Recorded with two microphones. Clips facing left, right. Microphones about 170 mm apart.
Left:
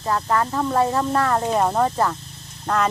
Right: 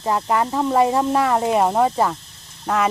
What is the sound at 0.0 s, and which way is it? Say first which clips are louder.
Speech: right 2 dB; 15° right (ahead or behind).